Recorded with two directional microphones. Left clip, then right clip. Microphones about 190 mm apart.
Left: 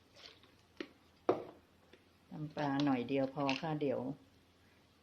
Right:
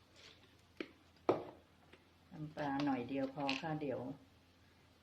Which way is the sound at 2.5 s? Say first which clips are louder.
Left 3 dB; 45° left (ahead or behind).